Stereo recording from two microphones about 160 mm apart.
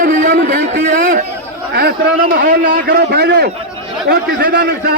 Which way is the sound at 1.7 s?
75° right (ahead or behind).